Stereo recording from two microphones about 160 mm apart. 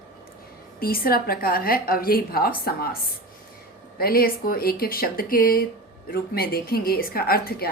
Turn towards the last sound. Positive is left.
turn(degrees=75)  # may be behind; listen again after turning